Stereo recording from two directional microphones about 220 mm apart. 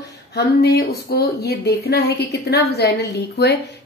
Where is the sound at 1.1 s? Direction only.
45° left (ahead or behind).